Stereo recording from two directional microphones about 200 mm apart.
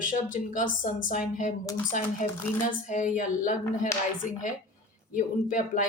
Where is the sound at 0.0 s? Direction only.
40° left (ahead or behind).